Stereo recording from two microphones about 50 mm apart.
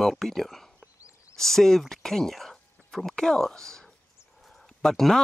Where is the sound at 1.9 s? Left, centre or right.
Centre.